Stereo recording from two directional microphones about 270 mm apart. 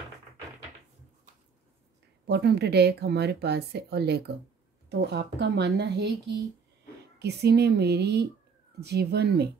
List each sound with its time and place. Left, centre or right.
2.2 s speech: right